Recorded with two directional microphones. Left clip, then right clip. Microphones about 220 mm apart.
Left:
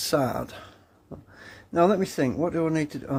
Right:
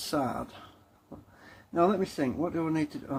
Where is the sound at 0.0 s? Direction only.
50° left (ahead or behind).